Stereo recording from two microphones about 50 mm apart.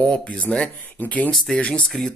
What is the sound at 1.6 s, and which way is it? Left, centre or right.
Speech, left.